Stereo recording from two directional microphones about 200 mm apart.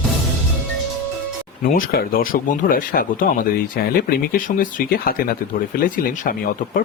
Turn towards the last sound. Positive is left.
turn(degrees=45)  # may be behind; listen again after turning